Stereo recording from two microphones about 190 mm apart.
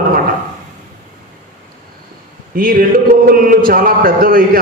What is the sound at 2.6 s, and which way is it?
Speech, 50° right (ahead or behind).